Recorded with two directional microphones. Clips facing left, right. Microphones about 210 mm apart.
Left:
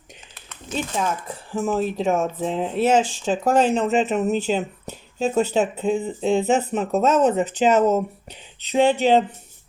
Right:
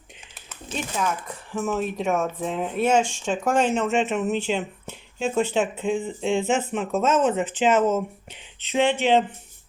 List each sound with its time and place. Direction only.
0.9 s speech: 30° left (ahead or behind)